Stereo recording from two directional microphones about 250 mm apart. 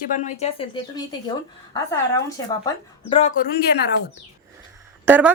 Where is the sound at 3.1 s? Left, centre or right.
Left.